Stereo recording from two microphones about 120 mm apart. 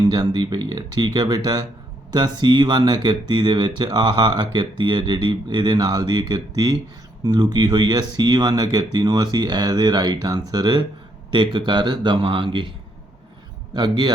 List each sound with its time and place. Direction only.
0.1 s speech: 35° right (ahead or behind)
13.7 s speech: 35° right (ahead or behind)